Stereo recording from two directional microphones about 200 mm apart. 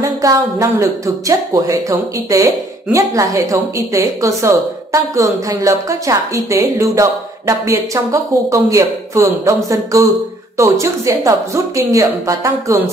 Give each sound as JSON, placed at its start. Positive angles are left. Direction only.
{"t": 0.0, "sound": "speech", "side_deg": -15}